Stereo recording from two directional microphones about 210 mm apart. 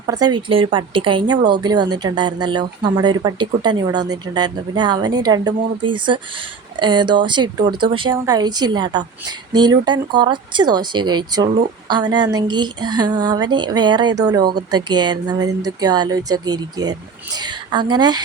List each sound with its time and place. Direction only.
0.0 s speech: 20° right (ahead or behind)